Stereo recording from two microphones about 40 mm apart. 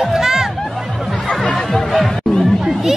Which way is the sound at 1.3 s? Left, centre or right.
Centre.